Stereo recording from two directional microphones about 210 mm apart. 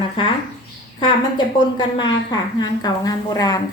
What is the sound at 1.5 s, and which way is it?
A woman's voice, 20° left (ahead or behind).